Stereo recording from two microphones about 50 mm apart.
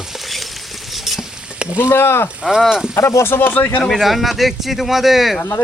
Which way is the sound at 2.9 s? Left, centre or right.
Left.